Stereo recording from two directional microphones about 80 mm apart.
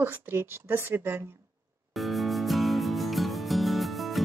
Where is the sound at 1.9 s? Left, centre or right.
Centre.